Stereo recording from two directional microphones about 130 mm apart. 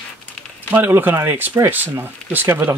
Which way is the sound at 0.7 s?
15° right (ahead or behind).